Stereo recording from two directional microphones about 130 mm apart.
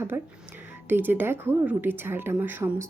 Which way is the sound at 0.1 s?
20° right (ahead or behind).